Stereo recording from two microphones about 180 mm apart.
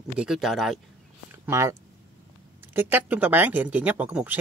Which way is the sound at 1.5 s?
15° right (ahead or behind).